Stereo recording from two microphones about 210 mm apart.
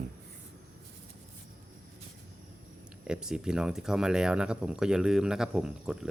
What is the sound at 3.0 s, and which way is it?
Speech, 5° right (ahead or behind).